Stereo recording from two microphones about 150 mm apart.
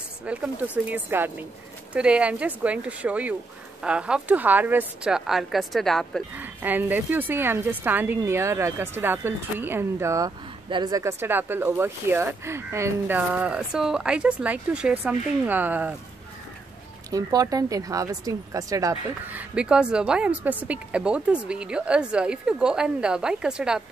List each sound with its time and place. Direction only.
0.3 s speech: 10° right (ahead or behind)
6.3 s speech: 10° right (ahead or behind)
17.1 s speech: 25° right (ahead or behind); by 23.8 s 5° right (ahead or behind)